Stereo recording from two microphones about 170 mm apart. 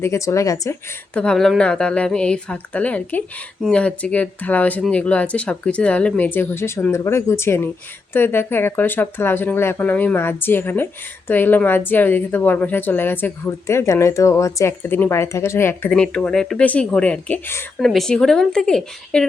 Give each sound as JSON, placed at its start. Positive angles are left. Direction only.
{"t": 0.0, "sound": "a woman's voice", "side_deg": 15}
{"t": 1.1, "sound": "a woman's voice", "side_deg": 5}
{"t": 17.7, "sound": "speech", "side_deg": 0}